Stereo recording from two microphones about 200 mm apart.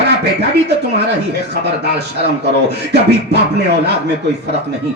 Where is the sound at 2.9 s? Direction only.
55° right (ahead or behind).